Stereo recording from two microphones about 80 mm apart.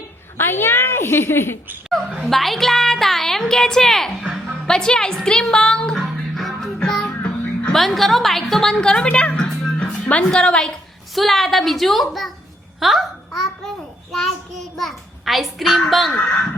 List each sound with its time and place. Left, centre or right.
0.3 s a woman's voice: left
2.2 s a woman's voice: centre
6.7 s music: centre
7.8 s a woman's voice: centre